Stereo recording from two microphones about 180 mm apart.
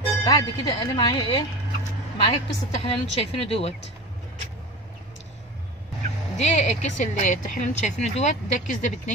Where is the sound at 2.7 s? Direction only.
35° left (ahead or behind).